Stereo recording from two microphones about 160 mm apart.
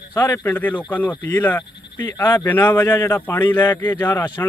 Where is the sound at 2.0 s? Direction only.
25° left (ahead or behind).